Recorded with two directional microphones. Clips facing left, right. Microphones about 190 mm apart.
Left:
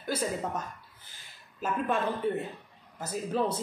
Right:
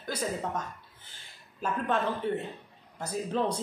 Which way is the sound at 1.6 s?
5° left (ahead or behind).